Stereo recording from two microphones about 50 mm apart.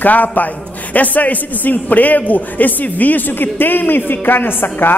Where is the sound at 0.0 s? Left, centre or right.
Left.